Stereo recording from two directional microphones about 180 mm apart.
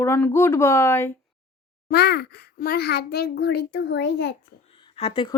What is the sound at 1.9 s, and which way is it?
A child's voice, 60° left (ahead or behind).